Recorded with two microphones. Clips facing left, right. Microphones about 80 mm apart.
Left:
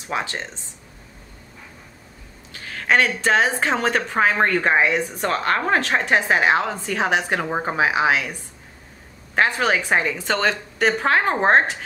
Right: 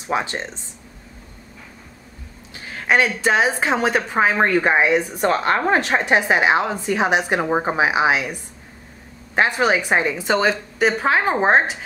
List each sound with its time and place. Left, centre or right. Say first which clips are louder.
0.1 s speech: right 3 dB; right
2.5 s speech: right 1 dB; centre